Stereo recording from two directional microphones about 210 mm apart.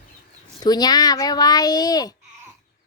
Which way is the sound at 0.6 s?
20° left (ahead or behind).